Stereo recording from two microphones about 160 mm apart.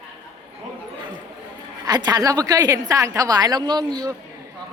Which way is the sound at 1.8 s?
25° right (ahead or behind).